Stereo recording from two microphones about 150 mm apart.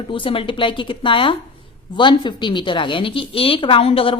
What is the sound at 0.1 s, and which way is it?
A woman's voice, 35° left (ahead or behind).